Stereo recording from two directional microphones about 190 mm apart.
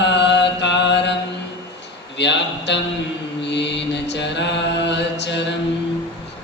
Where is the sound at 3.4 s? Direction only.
65° left (ahead or behind).